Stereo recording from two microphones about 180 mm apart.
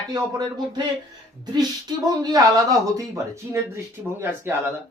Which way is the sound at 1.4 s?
20° right (ahead or behind).